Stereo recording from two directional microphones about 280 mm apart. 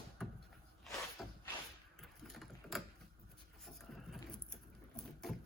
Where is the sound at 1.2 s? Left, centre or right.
Centre.